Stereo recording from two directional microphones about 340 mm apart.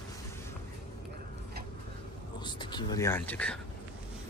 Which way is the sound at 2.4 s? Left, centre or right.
Centre.